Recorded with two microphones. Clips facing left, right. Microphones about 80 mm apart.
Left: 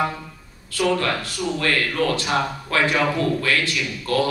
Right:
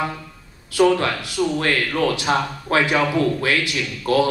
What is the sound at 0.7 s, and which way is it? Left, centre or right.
A man's voice, centre.